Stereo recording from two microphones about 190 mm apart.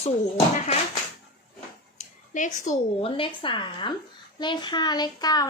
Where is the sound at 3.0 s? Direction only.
25° left (ahead or behind).